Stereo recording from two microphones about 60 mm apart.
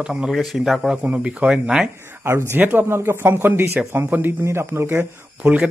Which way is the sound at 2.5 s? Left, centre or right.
Right.